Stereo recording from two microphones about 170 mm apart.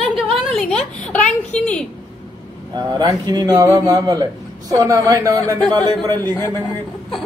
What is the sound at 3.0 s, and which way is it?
A man's voice, 25° right (ahead or behind).